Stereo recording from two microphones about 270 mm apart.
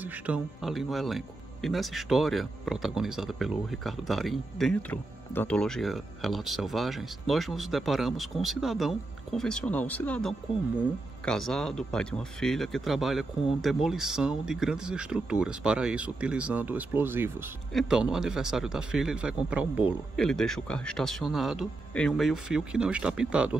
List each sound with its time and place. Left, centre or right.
0.0 s speech: centre